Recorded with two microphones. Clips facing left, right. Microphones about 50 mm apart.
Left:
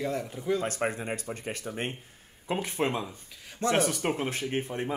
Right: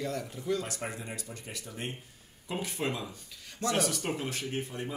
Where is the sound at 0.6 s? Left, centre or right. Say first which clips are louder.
Left 8 dB; left.